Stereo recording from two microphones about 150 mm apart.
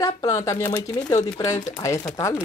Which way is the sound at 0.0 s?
20° left (ahead or behind).